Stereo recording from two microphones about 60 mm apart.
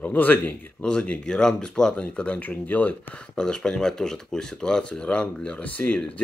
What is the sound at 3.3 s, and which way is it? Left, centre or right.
Speech, centre.